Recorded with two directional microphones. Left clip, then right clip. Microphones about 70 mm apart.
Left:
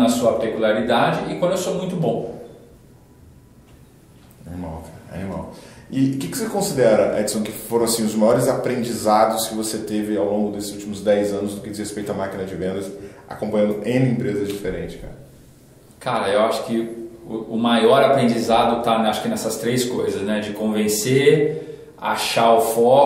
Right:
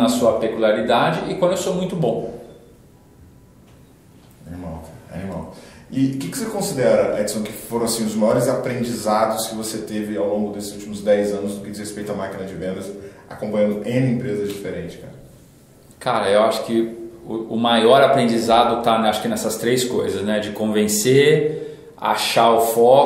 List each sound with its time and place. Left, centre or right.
0.0 s a man's voice: right
5.1 s speech: centre
16.0 s a man's voice: right